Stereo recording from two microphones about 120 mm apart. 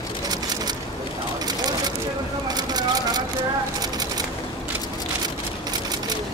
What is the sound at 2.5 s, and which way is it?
Vehicle, 35° right (ahead or behind).